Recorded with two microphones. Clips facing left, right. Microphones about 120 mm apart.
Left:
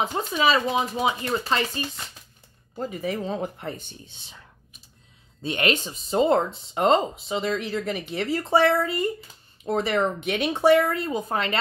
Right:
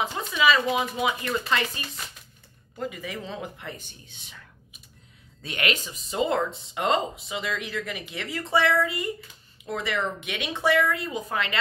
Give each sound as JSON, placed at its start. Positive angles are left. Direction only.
{"t": 0.0, "sound": "speech", "side_deg": 40}